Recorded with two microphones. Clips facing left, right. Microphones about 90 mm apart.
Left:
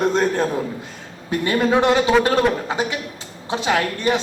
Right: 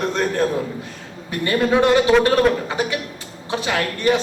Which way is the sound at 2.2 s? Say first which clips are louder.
Right 2 dB; 25° left (ahead or behind).